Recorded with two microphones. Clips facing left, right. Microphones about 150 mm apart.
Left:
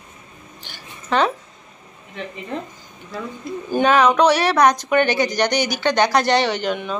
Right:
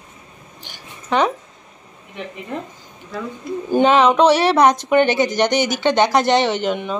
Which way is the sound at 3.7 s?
25° right (ahead or behind).